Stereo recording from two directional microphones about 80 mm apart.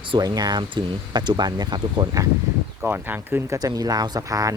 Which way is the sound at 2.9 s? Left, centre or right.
Right.